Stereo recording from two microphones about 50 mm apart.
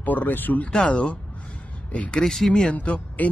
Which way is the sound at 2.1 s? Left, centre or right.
Centre.